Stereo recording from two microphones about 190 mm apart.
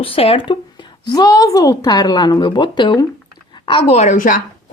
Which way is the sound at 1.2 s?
20° left (ahead or behind).